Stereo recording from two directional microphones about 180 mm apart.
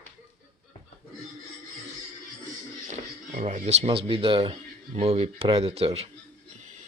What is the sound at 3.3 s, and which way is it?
Speech, 40° right (ahead or behind).